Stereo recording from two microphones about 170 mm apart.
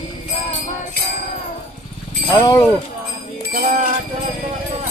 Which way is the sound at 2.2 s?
20° left (ahead or behind).